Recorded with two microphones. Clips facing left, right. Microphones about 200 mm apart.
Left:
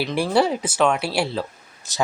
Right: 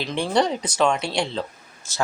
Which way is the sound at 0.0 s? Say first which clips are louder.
Left 2 dB; 5° left (ahead or behind).